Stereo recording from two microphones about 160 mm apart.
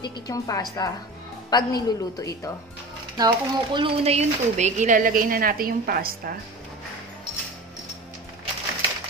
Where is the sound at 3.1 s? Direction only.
25° right (ahead or behind); by 6.4 s 70° right (ahead or behind).